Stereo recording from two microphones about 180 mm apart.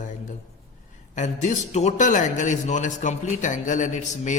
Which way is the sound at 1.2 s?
40° left (ahead or behind).